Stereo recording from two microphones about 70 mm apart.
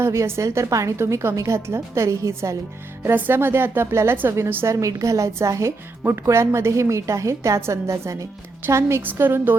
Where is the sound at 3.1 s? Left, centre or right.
Right.